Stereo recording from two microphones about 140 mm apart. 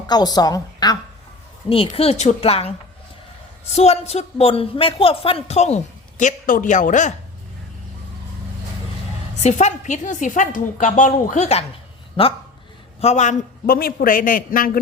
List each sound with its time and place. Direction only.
0.1 s a woman's voice: 30° left (ahead or behind)
1.9 s speech: 50° left (ahead or behind)
9.4 s a woman's voice: 55° left (ahead or behind)
12.2 s speech: 40° left (ahead or behind)
13.0 s a man's voice: 50° left (ahead or behind); by 14.7 s 80° left